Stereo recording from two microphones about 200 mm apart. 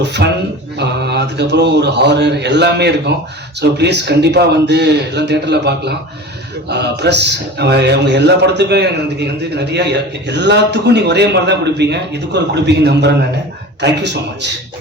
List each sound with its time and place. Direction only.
0.0 s a man's voice: 60° right (ahead or behind)